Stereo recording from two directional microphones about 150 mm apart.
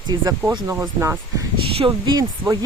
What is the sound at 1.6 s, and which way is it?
Speech, 35° right (ahead or behind).